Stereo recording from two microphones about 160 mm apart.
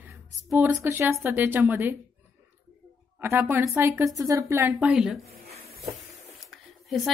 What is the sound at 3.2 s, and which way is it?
A woman's voice, 15° right (ahead or behind).